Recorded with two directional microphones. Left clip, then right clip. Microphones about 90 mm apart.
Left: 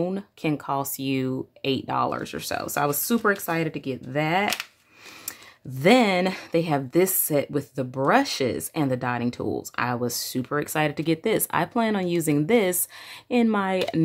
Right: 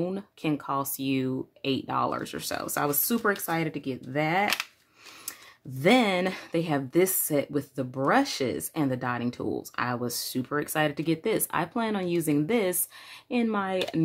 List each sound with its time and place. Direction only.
0.0 s speech: 30° left (ahead or behind)
5.8 s speech: 35° left (ahead or behind)